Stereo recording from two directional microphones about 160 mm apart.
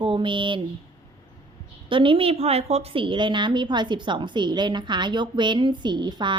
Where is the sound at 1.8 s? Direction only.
30° right (ahead or behind).